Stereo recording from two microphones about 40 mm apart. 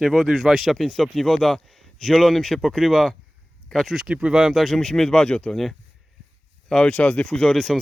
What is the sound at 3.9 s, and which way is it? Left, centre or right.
Speech, centre.